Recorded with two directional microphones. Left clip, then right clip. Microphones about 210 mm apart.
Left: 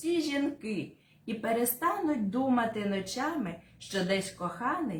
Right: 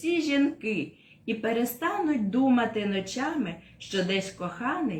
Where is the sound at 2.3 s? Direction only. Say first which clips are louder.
Right 5 dB; 10° left (ahead or behind).